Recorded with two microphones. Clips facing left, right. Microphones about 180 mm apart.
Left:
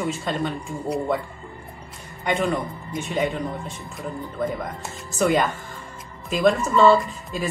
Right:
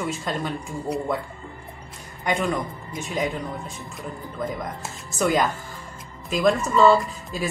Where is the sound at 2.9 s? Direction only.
Centre (ahead or behind).